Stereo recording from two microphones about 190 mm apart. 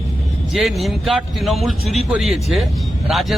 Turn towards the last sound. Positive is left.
turn(degrees=0)  # may be behind; listen again after turning